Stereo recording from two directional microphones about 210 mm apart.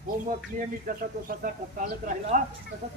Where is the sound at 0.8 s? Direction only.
40° right (ahead or behind).